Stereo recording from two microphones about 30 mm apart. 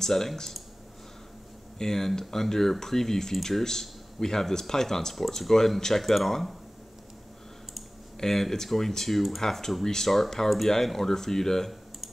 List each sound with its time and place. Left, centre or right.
0.0 s speech: centre
1.8 s speech: centre
5.1 s speech: centre
5.8 s speech: centre
8.2 s speech: centre